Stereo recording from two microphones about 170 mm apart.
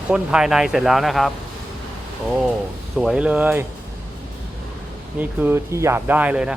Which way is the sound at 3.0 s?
5° right (ahead or behind).